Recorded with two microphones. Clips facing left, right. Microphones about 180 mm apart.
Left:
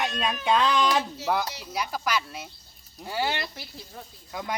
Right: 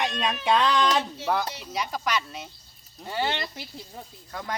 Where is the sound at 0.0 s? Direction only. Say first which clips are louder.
Right 1 dB; centre (ahead or behind).